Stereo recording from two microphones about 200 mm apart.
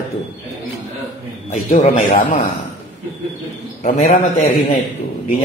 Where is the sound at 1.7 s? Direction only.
45° left (ahead or behind).